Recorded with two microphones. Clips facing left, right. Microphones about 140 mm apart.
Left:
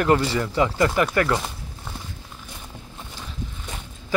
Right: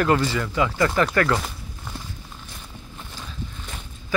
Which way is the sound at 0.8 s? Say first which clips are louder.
Right 2 dB; 15° left (ahead or behind).